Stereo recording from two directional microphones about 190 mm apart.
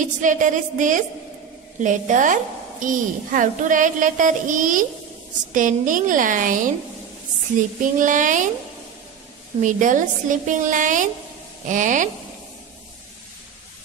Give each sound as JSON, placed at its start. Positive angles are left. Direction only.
{"t": 0.0, "sound": "a woman's voice", "side_deg": -40}
{"t": 8.0, "sound": "a woman's voice", "side_deg": -45}
{"t": 9.6, "sound": "a woman's voice", "side_deg": -45}